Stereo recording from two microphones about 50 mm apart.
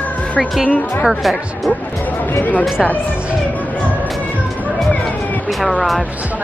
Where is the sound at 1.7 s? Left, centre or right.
Left.